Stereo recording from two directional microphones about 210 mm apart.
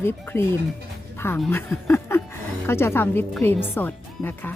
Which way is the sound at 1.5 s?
10° left (ahead or behind).